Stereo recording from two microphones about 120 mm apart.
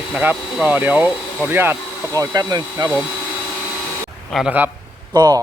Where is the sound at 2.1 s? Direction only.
30° right (ahead or behind).